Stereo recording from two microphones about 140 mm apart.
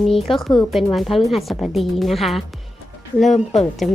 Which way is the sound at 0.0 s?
Centre (ahead or behind).